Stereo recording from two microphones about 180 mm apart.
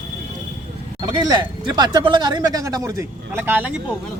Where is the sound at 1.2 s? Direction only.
25° right (ahead or behind).